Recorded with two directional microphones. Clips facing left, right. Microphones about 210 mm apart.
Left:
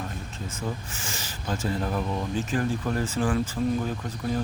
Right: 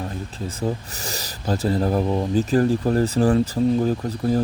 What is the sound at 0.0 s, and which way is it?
Speech, 35° right (ahead or behind).